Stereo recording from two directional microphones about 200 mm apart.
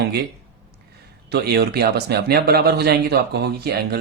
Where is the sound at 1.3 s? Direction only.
55° right (ahead or behind).